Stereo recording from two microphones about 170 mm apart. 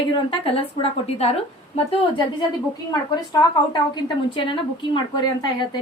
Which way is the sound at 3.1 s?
25° left (ahead or behind).